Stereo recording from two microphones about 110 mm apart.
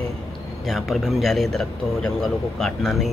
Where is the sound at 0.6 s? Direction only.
Centre (ahead or behind).